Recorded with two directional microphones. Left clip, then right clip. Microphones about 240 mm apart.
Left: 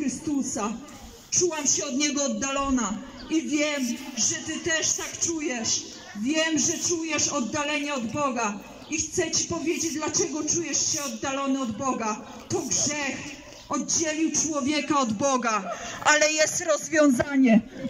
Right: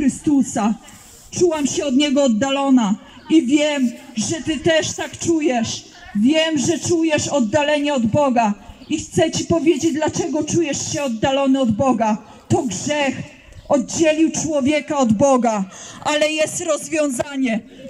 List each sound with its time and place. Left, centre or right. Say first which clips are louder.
1.3 s a man's voice: right 7 dB; right; by 17.6 s centre